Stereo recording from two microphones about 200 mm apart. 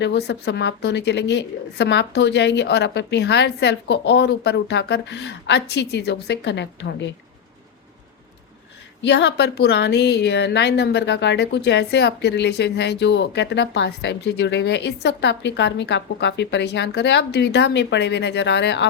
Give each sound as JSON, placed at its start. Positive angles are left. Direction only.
{"t": 0.0, "sound": "a woman's voice", "side_deg": 55}
{"t": 9.0, "sound": "a woman's voice", "side_deg": 60}